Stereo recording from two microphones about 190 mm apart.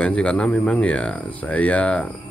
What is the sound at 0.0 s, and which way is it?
A man's voice, 5° left (ahead or behind).